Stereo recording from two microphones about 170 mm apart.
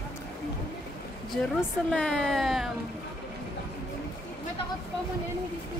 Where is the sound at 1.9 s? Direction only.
5° left (ahead or behind).